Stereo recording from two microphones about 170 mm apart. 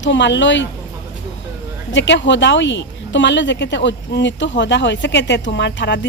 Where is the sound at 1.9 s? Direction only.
90° left.